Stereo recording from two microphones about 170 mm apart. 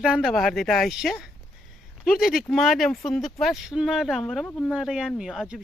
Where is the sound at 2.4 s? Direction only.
Centre (ahead or behind).